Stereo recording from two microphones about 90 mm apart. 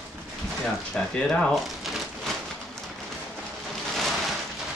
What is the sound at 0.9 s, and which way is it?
Speech, 10° left (ahead or behind).